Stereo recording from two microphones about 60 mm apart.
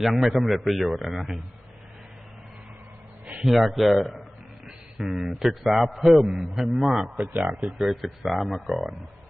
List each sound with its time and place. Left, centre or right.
0.0 s a man's voice: centre
3.4 s a man's voice: centre
7.2 s speech: right
7.8 s a man's voice: centre